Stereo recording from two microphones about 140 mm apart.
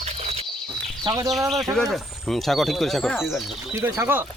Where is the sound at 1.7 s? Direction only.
Centre (ahead or behind).